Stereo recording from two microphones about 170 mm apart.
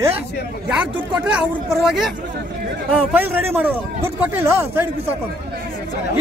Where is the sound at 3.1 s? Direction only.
10° right (ahead or behind).